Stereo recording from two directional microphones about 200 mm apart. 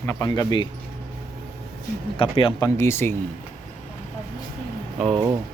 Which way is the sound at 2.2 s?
25° left (ahead or behind).